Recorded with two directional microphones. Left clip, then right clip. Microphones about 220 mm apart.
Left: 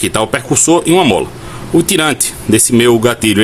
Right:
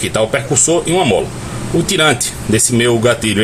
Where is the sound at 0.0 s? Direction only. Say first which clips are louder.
Left 1 dB; 45° left (ahead or behind).